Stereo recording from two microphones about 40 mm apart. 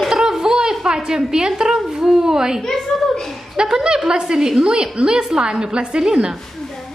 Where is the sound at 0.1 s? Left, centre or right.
Centre.